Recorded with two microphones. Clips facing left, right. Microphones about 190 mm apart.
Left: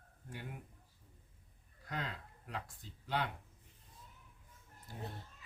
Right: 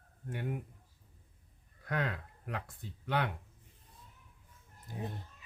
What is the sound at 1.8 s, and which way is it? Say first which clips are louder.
Speech: right 7 dB; 60° right (ahead or behind).